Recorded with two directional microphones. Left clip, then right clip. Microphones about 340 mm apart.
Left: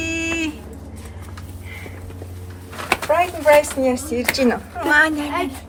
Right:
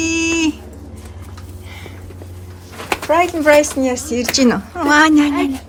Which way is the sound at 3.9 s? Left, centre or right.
Right.